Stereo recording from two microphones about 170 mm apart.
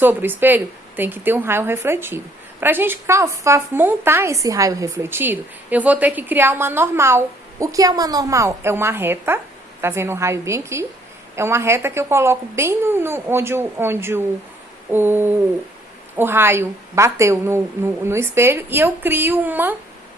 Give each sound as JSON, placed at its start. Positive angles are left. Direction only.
{"t": 0.0, "sound": "speech", "side_deg": -10}